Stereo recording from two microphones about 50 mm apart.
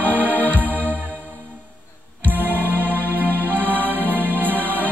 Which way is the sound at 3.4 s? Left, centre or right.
Right.